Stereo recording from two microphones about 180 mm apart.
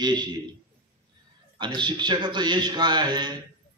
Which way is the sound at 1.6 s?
25° right (ahead or behind).